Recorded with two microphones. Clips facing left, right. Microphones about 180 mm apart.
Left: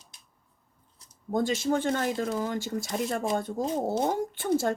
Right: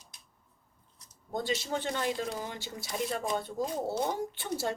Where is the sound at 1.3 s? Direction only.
45° left (ahead or behind).